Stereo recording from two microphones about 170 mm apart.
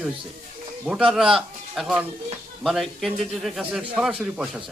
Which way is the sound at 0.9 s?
5° right (ahead or behind).